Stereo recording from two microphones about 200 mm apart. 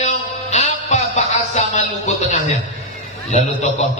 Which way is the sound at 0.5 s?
35° left (ahead or behind).